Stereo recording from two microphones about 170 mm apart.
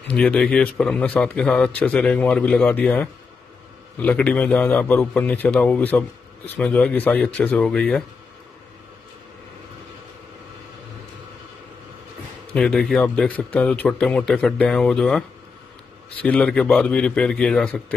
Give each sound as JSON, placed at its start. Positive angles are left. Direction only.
{"t": 0.1, "sound": "a man's voice", "side_deg": 5}
{"t": 12.5, "sound": "a man's voice", "side_deg": 5}